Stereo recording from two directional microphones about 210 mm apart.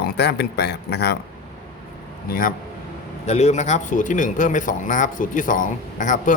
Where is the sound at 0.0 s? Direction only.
50° left (ahead or behind).